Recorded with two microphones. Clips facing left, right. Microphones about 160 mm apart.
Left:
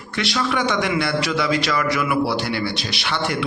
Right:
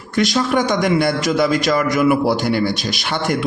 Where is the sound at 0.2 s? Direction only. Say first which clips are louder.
Right 5 dB; 45° right (ahead or behind).